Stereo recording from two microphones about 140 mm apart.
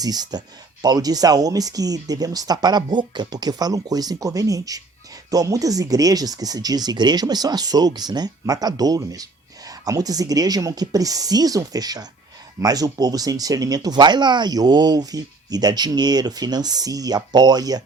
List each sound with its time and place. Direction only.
0.0 s speech: 30° right (ahead or behind)